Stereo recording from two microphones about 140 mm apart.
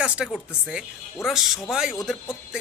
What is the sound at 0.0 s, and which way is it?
Speech, 10° right (ahead or behind).